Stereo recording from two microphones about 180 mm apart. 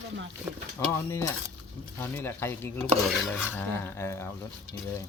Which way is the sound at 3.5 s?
10° left (ahead or behind).